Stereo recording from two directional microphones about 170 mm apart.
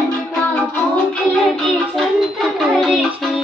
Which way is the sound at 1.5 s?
Centre (ahead or behind).